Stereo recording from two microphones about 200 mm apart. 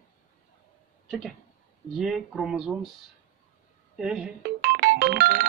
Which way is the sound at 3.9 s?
Centre (ahead or behind).